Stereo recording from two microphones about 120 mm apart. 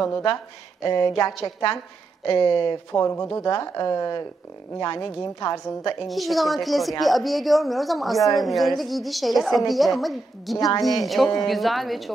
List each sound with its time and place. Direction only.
0.8 s speech: 30° left (ahead or behind)
6.0 s a woman's voice: centre (ahead or behind)